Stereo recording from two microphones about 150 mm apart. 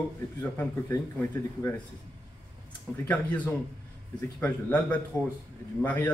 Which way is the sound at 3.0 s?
10° left (ahead or behind).